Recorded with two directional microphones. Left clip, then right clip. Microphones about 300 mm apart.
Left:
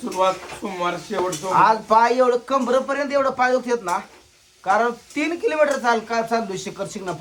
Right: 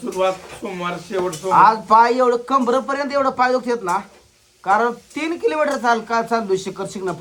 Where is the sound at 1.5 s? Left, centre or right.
Centre.